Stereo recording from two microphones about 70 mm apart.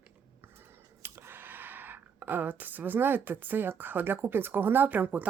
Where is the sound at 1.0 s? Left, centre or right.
Right.